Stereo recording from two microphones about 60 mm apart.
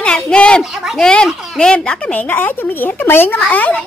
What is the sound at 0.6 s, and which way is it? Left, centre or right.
Speech, centre.